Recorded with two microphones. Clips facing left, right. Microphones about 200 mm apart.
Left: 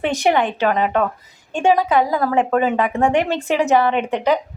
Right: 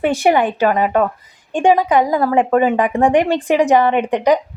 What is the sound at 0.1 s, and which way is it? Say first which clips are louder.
A woman's voice: right 3 dB; 10° right (ahead or behind).